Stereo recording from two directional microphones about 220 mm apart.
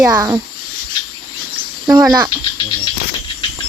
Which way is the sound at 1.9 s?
15° right (ahead or behind).